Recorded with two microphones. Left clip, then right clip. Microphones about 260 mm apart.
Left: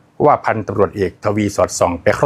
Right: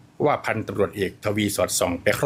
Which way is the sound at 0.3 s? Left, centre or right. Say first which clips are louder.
Left 9 dB; centre.